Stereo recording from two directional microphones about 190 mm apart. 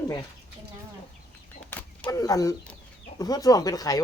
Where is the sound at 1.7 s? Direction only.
10° left (ahead or behind).